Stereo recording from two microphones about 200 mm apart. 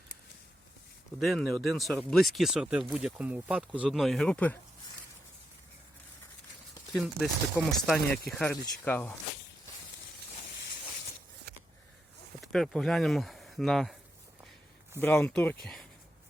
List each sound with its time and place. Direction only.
1.2 s speech: centre (ahead or behind)
6.9 s speech: centre (ahead or behind)
11.5 s a sound: 55° right (ahead or behind)
12.5 s speech: centre (ahead or behind)
15.0 s speech: 10° left (ahead or behind)